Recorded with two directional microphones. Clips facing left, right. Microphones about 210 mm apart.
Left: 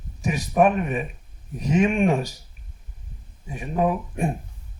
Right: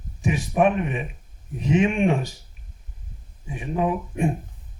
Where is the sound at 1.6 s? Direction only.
40° left (ahead or behind).